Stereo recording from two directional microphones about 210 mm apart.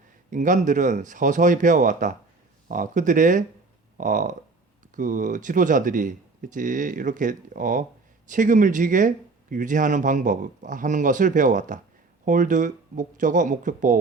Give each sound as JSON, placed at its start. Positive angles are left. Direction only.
{"t": 0.3, "sound": "speech", "side_deg": -35}